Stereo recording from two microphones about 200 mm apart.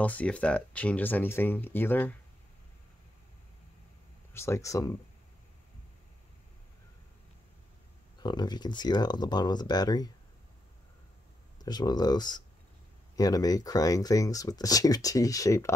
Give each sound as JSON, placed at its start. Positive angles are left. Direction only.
{"t": 0.0, "sound": "speech", "side_deg": 5}
{"t": 4.3, "sound": "speech", "side_deg": 15}
{"t": 8.2, "sound": "speech", "side_deg": 20}
{"t": 11.5, "sound": "speech", "side_deg": 20}